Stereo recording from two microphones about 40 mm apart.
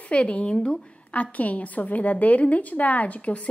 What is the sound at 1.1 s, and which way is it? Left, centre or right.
A woman's voice, left.